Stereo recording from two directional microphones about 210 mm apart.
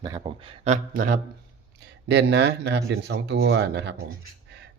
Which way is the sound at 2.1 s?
55° right (ahead or behind).